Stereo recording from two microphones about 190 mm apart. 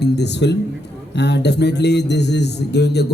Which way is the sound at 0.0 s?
65° left (ahead or behind).